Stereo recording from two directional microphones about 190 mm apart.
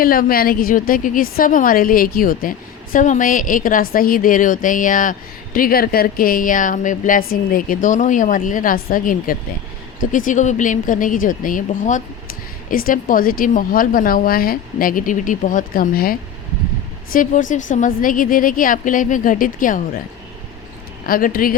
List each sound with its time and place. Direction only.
0.0 s a woman's voice: 50° left (ahead or behind)
21.1 s a woman's voice: 50° left (ahead or behind)